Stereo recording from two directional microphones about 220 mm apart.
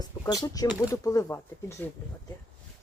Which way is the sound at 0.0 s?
15° left (ahead or behind).